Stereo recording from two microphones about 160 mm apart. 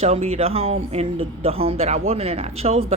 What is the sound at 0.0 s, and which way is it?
Speech, 40° right (ahead or behind).